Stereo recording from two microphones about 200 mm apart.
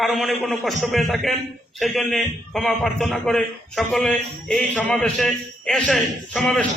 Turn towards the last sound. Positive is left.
turn(degrees=5)  # may be behind; listen again after turning